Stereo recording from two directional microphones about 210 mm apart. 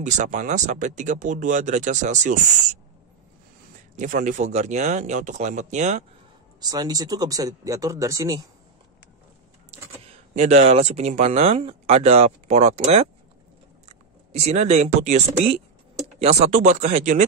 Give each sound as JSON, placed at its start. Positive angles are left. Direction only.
{"t": 0.0, "sound": "speech", "side_deg": -35}
{"t": 3.9, "sound": "speech", "side_deg": -35}
{"t": 6.6, "sound": "speech", "side_deg": -20}
{"t": 10.3, "sound": "speech", "side_deg": -35}
{"t": 14.3, "sound": "speech", "side_deg": -30}